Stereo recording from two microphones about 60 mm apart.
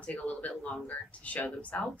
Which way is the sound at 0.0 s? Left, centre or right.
Left.